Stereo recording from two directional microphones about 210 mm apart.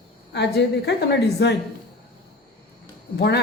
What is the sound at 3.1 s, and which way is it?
Speech, 50° left (ahead or behind).